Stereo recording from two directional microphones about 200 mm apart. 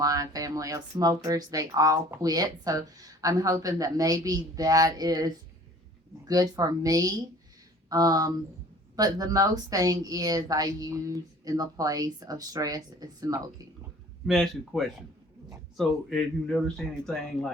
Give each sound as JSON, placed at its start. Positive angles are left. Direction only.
{"t": 0.0, "sound": "speech", "side_deg": -15}
{"t": 14.3, "sound": "speech", "side_deg": 0}